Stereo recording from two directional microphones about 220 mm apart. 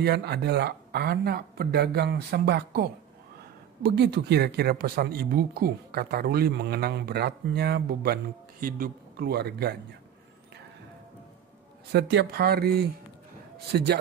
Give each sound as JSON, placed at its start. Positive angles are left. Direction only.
{"t": 0.0, "sound": "speech", "side_deg": -50}
{"t": 11.9, "sound": "speech", "side_deg": -50}